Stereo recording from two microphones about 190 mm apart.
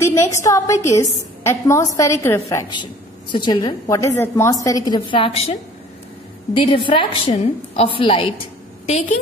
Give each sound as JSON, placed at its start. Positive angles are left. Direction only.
{"t": 0.0, "sound": "a woman's voice", "side_deg": 15}